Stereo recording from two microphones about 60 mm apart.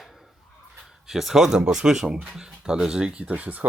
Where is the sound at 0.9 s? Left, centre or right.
Centre.